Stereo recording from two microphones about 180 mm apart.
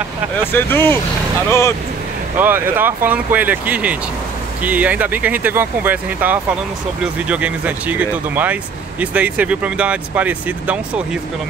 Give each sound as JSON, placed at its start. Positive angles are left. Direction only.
{"t": 0.4, "sound": "speech", "side_deg": 10}
{"t": 2.3, "sound": "speech", "side_deg": -10}